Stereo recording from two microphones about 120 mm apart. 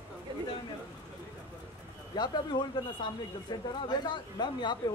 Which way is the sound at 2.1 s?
40° left (ahead or behind).